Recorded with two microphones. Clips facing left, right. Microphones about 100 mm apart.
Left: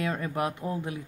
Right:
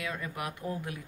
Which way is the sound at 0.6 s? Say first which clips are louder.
Left 4 dB; 20° left (ahead or behind).